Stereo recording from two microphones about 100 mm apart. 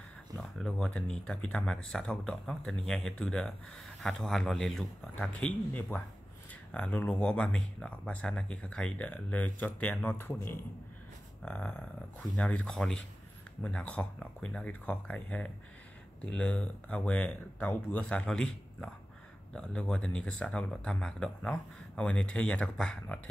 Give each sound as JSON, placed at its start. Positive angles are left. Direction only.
{"t": 0.4, "sound": "speech", "side_deg": 10}
{"t": 5.9, "sound": "speech", "side_deg": 15}
{"t": 11.4, "sound": "speech", "side_deg": 10}